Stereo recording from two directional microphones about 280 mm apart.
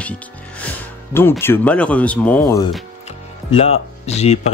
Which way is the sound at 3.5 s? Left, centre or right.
Left.